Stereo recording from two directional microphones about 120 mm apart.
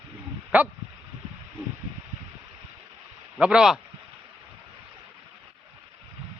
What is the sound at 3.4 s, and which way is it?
Speech, 5° right (ahead or behind).